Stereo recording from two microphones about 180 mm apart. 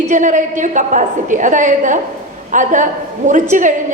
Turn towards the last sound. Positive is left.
turn(degrees=-45)  # may be behind; listen again after turning